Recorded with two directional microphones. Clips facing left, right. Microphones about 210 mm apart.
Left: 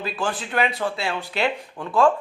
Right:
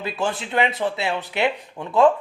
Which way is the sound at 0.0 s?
20° right (ahead or behind).